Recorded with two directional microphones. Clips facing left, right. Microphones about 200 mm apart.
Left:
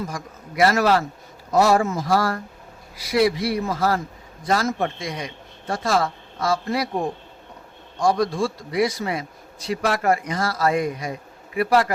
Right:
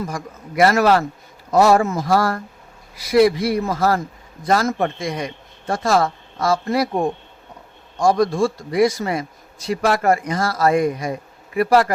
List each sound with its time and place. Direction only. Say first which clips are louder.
0.1 s a man's voice: right 4 dB; 55° right (ahead or behind)
8.0 s a man's voice: right 4 dB; 50° right (ahead or behind)